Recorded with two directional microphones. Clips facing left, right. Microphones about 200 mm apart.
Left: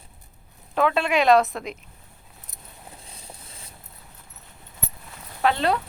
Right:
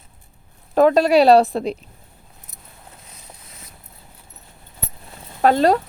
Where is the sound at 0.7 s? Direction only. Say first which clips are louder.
Right 8 dB; 40° right (ahead or behind).